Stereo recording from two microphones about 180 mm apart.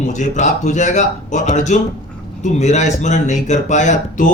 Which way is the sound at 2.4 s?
40° left (ahead or behind).